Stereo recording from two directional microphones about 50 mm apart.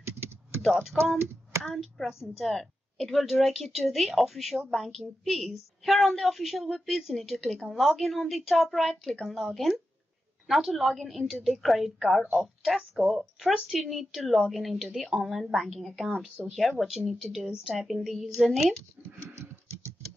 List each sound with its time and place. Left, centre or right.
0.6 s speech: centre
2.3 s a woman's voice: centre